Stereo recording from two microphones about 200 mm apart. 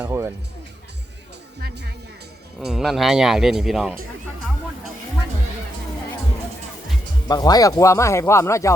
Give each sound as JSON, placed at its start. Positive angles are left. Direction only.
{"t": 0.0, "sound": "music", "side_deg": -15}
{"t": 2.6, "sound": "speech", "side_deg": 0}
{"t": 7.3, "sound": "speech", "side_deg": 20}